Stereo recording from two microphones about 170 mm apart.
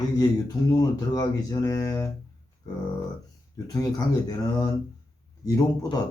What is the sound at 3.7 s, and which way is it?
Speech, 20° left (ahead or behind).